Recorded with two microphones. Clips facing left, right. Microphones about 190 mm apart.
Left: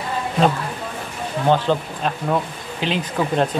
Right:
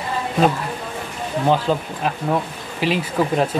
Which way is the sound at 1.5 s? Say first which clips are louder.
Left 2 dB; 5° right (ahead or behind).